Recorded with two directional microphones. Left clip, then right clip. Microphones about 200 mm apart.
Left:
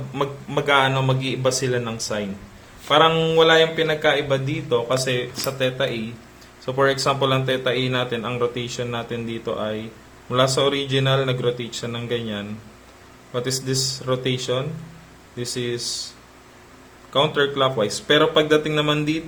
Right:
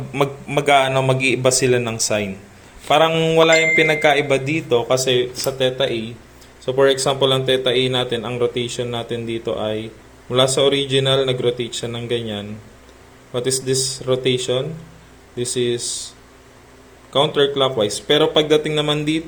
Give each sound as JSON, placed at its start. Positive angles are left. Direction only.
{"t": 0.2, "sound": "a man's voice", "side_deg": -20}